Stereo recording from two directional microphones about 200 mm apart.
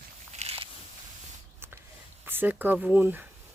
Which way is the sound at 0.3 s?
30° right (ahead or behind).